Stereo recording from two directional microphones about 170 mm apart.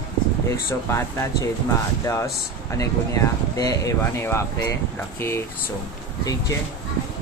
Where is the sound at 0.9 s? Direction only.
15° left (ahead or behind).